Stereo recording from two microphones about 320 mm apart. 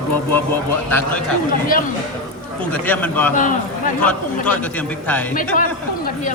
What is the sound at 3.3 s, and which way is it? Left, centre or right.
Speech, left.